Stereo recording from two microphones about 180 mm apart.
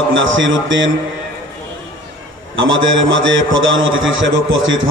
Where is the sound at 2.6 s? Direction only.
90° right.